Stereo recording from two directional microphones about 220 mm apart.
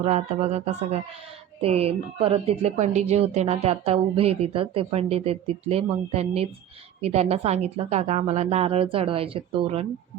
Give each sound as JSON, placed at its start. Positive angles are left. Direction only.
{"t": 0.0, "sound": "speech", "side_deg": -30}